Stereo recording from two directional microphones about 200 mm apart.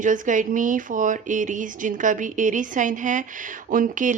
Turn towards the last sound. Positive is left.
turn(degrees=-40)  # may be behind; listen again after turning